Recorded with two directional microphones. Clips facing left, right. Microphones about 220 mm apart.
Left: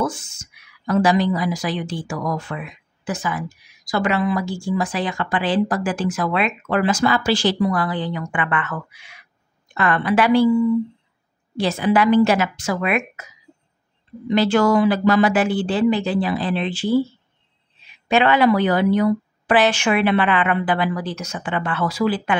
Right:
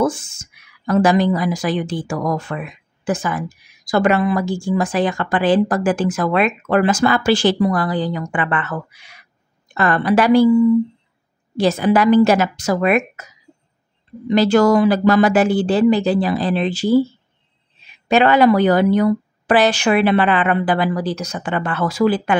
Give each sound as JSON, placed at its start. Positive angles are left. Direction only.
{"t": 0.0, "sound": "a woman's voice", "side_deg": -50}
{"t": 11.5, "sound": "a woman's voice", "side_deg": -45}
{"t": 14.3, "sound": "a woman's voice", "side_deg": -40}
{"t": 18.0, "sound": "a woman's voice", "side_deg": -40}